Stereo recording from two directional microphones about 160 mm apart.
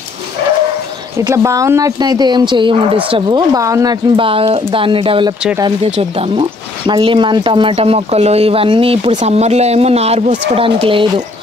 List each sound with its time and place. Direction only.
1.3 s speech: 20° right (ahead or behind)